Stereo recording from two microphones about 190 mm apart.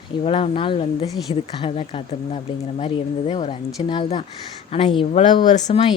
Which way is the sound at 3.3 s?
30° left (ahead or behind).